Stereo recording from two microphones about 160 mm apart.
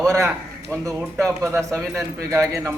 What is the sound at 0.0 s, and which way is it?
A man's voice, 20° right (ahead or behind).